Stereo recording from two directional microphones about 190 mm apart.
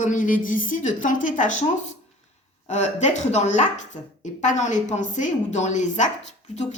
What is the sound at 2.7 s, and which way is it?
A woman's voice, 40° left (ahead or behind).